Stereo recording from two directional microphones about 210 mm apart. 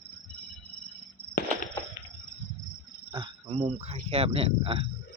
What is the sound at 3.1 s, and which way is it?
Speech, 25° right (ahead or behind).